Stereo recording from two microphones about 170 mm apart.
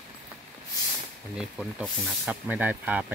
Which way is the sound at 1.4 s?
5° right (ahead or behind).